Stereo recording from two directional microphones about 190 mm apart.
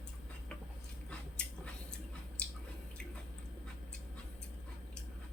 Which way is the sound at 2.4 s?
5° left (ahead or behind).